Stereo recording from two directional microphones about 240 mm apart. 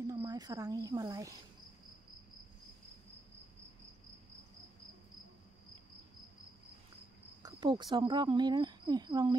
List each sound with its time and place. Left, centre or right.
0.0 s speech: centre
7.4 s speech: centre